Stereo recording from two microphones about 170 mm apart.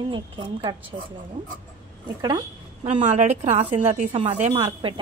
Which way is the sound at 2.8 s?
40° right (ahead or behind).